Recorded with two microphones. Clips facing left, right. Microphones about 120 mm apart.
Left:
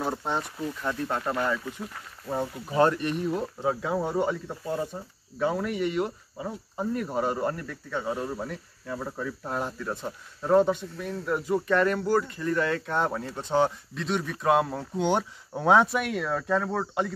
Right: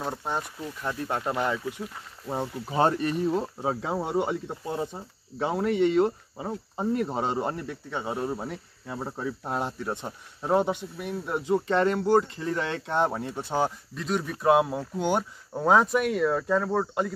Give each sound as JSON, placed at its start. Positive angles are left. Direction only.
{"t": 0.0, "sound": "speech", "side_deg": 0}
{"t": 2.3, "sound": "speech", "side_deg": -30}
{"t": 13.4, "sound": "speech", "side_deg": -10}